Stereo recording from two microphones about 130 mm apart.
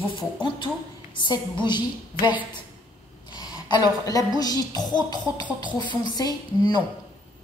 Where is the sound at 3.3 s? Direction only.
30° left (ahead or behind).